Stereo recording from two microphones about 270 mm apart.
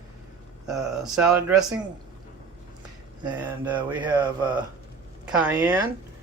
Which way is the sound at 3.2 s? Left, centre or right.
Centre.